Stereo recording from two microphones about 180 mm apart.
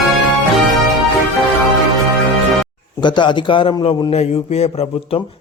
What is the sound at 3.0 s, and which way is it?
Speech, 25° left (ahead or behind).